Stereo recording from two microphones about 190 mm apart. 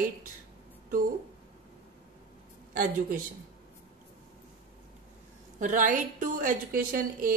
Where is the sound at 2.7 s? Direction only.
45° right (ahead or behind).